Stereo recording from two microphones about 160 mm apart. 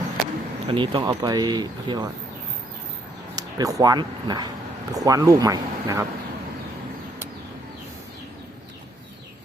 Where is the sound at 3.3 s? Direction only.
20° right (ahead or behind).